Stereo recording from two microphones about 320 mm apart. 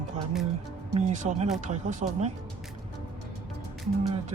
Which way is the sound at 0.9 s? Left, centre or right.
Right.